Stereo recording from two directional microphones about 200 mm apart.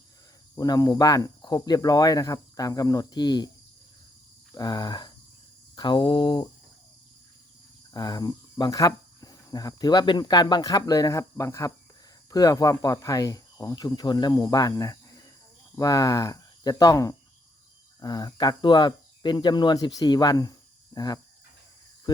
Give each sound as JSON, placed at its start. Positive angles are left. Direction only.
{"t": 0.5, "sound": "speech", "side_deg": 20}
{"t": 4.5, "sound": "speech", "side_deg": 20}
{"t": 7.9, "sound": "speech", "side_deg": 20}